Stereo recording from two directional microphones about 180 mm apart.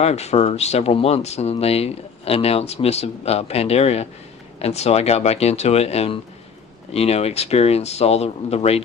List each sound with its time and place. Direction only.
0.0 s speech: 35° left (ahead or behind)